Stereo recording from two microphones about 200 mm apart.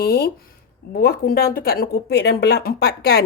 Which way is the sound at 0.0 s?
50° left (ahead or behind).